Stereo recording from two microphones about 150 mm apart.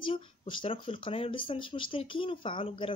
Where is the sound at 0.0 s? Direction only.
35° left (ahead or behind).